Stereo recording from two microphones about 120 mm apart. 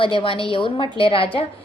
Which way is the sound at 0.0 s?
45° left (ahead or behind).